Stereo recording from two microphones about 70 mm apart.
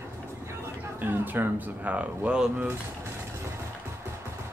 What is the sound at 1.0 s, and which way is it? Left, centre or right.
Speech, right.